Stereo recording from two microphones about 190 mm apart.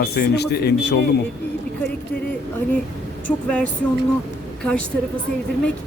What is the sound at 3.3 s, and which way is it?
Speech, 5° left (ahead or behind).